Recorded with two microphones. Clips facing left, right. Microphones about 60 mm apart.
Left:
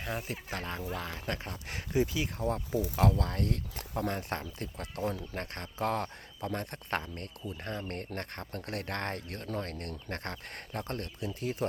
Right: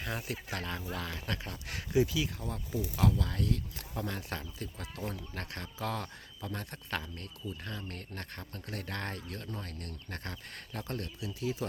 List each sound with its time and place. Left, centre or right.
0.0 s speech: centre
0.3 s speech: left
5.0 s speech: left
10.7 s speech: left